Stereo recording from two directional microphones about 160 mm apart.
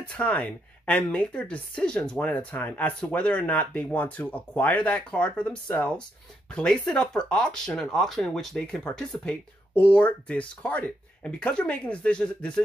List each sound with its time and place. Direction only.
0.0 s a woman's voice: 10° left (ahead or behind)